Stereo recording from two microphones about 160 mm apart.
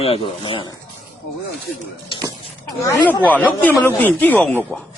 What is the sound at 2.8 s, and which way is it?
Speech, 20° left (ahead or behind).